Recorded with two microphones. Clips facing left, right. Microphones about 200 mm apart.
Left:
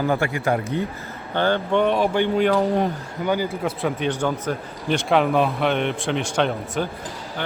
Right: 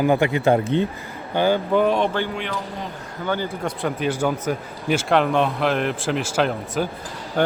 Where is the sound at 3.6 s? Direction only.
Centre (ahead or behind).